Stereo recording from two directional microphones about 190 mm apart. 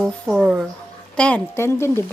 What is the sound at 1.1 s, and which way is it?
Speech, 5° left (ahead or behind).